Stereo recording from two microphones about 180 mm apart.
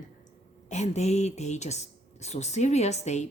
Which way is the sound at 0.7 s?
40° left (ahead or behind).